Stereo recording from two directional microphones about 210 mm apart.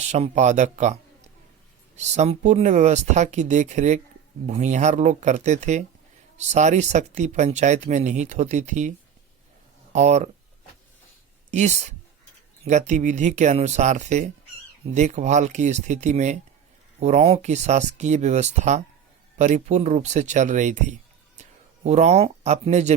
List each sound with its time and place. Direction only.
0.0 s speech: 35° right (ahead or behind)
2.0 s speech: 30° right (ahead or behind)
9.9 s speech: 35° right (ahead or behind)
11.5 s speech: 35° right (ahead or behind)
21.8 s speech: 30° right (ahead or behind)